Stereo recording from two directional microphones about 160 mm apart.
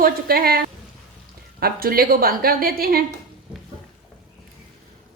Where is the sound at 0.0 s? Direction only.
70° right (ahead or behind).